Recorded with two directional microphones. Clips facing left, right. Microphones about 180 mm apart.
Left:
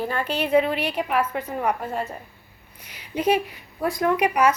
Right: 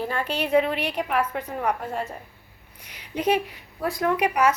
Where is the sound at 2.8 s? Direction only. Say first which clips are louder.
Left 2 dB; 5° left (ahead or behind).